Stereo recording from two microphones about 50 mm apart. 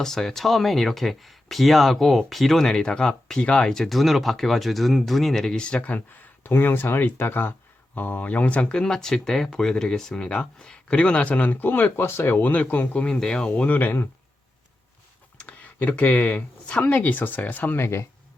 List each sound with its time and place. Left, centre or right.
0.0 s speech: centre
3.7 s speech: centre
5.6 s speech: left
6.4 s speech: left
7.9 s speech: left
8.7 s speech: centre; by 12.4 s left
12.4 s speech: left
13.0 s speech: centre
13.5 s speech: left
16.0 s speech: left
17.7 s speech: left